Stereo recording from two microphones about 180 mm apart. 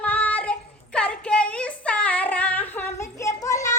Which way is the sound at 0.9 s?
5° left (ahead or behind).